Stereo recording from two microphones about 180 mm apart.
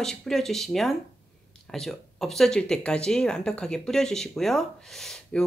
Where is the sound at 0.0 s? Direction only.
5° left (ahead or behind).